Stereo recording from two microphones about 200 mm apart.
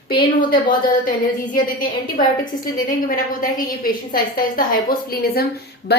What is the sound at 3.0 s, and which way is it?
A woman's voice, 45° left (ahead or behind).